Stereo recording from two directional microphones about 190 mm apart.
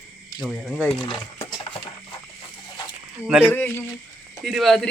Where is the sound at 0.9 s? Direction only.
25° left (ahead or behind).